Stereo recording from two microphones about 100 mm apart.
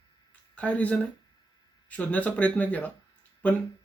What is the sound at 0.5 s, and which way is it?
Speech, 15° left (ahead or behind).